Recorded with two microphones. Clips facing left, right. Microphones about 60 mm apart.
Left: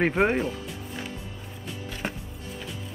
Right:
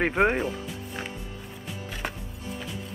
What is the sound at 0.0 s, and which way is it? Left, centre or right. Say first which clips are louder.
Speech: even; centre.